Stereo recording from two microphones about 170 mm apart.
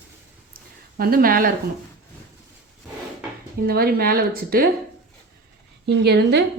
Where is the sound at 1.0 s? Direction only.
60° right (ahead or behind).